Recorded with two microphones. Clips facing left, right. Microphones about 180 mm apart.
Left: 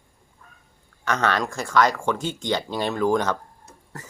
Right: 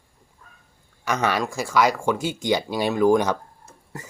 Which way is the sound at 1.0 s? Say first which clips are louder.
Even; 10° right (ahead or behind).